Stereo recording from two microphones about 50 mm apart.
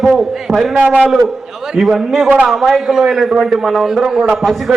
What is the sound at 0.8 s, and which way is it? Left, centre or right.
Speech, right.